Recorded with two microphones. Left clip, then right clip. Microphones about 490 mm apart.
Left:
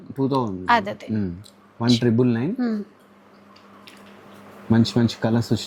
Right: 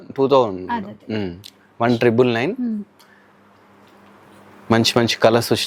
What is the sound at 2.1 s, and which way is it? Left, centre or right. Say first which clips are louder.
Speech: right 5 dB; right.